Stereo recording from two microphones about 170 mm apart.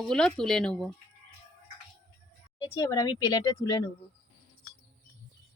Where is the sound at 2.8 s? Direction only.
20° left (ahead or behind).